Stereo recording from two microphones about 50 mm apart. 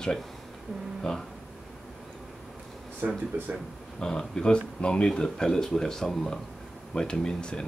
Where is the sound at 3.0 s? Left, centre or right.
Right.